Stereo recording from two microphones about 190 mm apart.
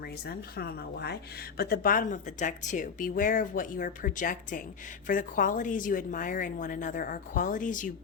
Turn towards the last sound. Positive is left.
turn(degrees=45)  # may be behind; listen again after turning